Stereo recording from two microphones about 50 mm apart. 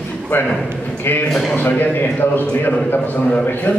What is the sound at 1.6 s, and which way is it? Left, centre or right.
A man's voice, left.